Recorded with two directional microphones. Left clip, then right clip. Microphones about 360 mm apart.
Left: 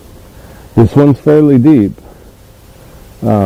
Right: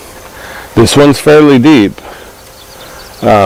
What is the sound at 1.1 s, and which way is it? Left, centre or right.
Speech, centre.